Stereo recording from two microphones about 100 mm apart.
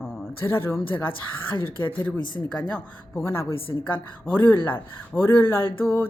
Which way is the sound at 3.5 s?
65° left (ahead or behind).